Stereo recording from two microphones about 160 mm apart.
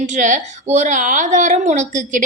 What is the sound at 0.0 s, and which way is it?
A woman's voice, 50° right (ahead or behind).